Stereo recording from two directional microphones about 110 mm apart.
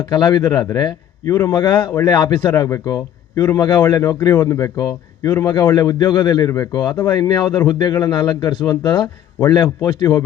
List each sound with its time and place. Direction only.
0.0 s a man's voice: 40° left (ahead or behind)
1.9 s a man's voice: 25° left (ahead or behind)
2.1 s a man's voice: 45° left (ahead or behind)